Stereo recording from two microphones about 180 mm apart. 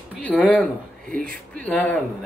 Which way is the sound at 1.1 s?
50° right (ahead or behind).